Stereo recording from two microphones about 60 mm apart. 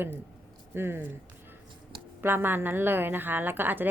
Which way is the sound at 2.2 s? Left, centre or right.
Right.